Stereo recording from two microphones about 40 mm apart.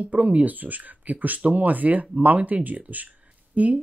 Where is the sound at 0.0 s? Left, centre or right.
Right.